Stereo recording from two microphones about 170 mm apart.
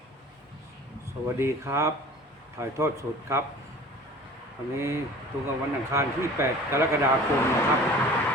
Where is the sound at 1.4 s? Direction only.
15° right (ahead or behind).